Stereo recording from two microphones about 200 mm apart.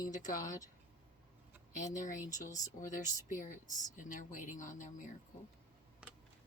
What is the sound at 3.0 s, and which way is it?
Speech, 40° left (ahead or behind).